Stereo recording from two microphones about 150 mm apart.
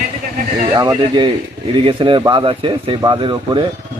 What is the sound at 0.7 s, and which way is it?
Speech, 25° right (ahead or behind).